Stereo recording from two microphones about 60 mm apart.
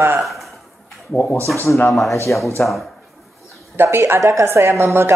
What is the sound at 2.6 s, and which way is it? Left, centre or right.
Speech, left.